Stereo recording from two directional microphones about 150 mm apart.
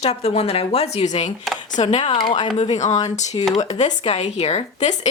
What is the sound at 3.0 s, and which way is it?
A woman's voice, 50° left (ahead or behind).